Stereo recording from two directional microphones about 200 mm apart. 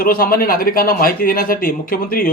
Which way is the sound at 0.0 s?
45° left (ahead or behind).